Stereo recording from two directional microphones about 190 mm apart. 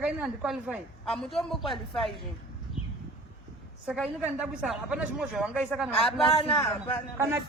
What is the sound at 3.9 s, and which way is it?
A woman's voice, 5° right (ahead or behind).